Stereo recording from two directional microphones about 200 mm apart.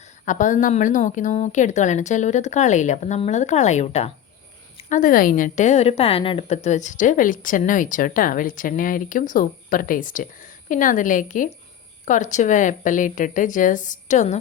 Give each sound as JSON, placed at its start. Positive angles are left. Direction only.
{"t": 0.3, "sound": "a woman's voice", "side_deg": 40}